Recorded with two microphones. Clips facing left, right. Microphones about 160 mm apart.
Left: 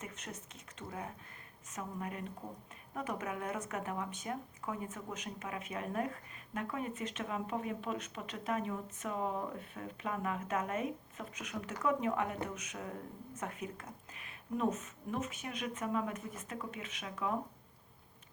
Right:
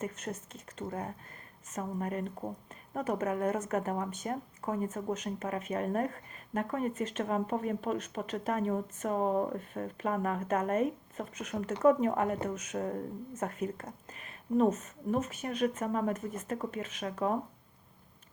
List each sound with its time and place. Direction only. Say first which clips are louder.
0.0 s speech: right 9 dB; 45° right (ahead or behind)